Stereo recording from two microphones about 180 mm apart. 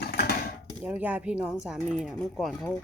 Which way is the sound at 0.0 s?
60° left (ahead or behind).